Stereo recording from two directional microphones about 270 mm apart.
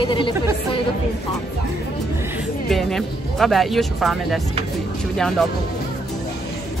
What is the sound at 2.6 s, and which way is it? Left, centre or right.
Speech, centre.